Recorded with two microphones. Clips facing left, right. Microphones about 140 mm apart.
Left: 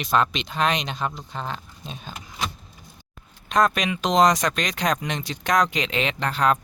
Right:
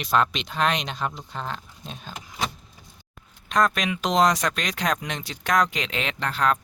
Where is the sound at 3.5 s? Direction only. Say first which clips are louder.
Left 2 dB; centre (ahead or behind).